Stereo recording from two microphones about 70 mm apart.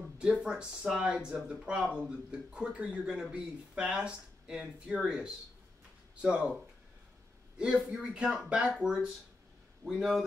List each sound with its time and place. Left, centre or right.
0.2 s speech: centre
8.0 s speech: centre